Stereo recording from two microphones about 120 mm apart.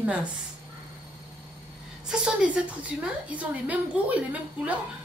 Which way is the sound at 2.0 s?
5° right (ahead or behind).